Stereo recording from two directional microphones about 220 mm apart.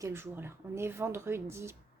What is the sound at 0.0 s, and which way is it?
Speech, 10° right (ahead or behind).